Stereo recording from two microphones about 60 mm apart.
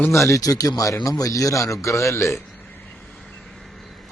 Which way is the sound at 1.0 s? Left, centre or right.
Left.